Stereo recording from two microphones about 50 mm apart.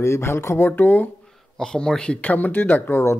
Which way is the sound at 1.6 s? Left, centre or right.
Centre.